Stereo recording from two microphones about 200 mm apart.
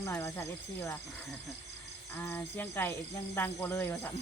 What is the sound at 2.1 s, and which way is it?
Speech, 10° left (ahead or behind).